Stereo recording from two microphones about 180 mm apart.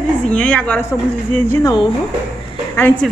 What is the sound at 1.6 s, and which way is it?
Speech, 25° left (ahead or behind).